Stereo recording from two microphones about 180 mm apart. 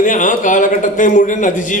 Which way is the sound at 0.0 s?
45° left (ahead or behind).